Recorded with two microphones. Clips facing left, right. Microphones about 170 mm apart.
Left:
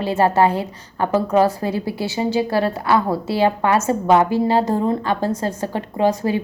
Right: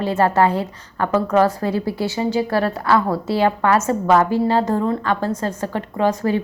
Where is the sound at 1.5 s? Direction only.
25° left (ahead or behind).